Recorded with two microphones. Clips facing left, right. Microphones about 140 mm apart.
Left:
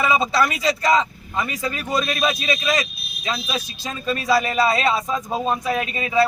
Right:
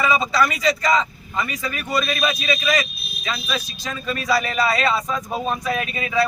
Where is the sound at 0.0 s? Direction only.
25° left (ahead or behind).